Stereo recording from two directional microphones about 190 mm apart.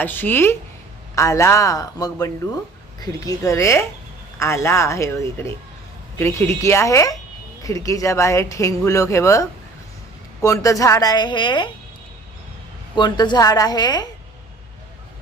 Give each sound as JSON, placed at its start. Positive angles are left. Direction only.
{"t": 0.0, "sound": "a woman's voice", "side_deg": 10}
{"t": 13.0, "sound": "a woman's voice", "side_deg": 25}